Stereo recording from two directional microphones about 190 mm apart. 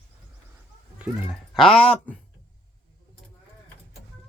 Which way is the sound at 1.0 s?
Centre (ahead or behind).